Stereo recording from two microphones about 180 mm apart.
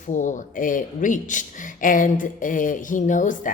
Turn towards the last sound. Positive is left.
turn(degrees=45)  # may be behind; listen again after turning